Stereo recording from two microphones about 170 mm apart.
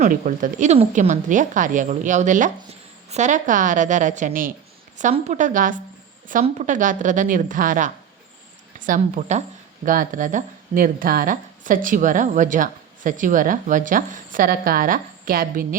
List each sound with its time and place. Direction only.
0.0 s speech: 50° right (ahead or behind)
5.1 s speech: 45° right (ahead or behind)